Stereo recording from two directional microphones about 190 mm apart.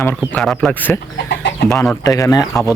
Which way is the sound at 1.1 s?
55° left (ahead or behind).